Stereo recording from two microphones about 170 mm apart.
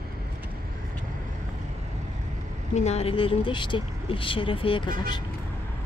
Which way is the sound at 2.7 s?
40° left (ahead or behind).